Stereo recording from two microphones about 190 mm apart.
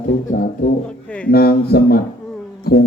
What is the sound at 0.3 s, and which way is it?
Speech, 45° left (ahead or behind).